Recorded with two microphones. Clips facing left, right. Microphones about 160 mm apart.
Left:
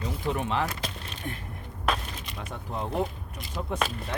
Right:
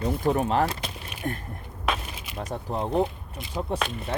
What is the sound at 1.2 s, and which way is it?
Speech, 50° right (ahead or behind).